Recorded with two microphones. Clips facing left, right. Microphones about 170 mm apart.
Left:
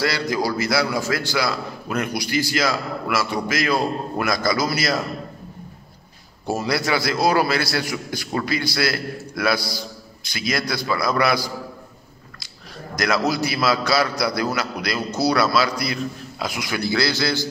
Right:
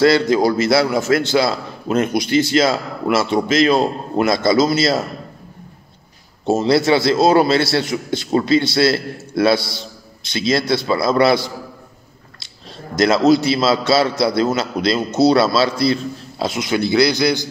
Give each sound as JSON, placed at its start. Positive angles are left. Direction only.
{"t": 0.0, "sound": "a man's voice", "side_deg": -25}
{"t": 6.4, "sound": "a man's voice", "side_deg": -25}